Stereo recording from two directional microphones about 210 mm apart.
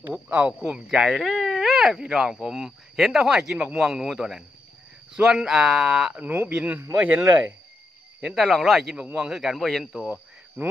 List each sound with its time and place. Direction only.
0.3 s speech: 5° right (ahead or behind)